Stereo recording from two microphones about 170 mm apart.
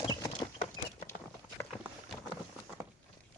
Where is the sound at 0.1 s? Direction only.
25° left (ahead or behind).